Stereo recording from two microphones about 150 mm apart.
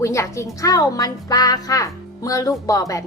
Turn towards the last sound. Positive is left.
turn(degrees=20)  # may be behind; listen again after turning